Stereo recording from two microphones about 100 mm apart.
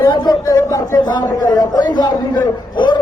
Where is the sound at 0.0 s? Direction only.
50° left (ahead or behind); by 1.0 s 35° left (ahead or behind).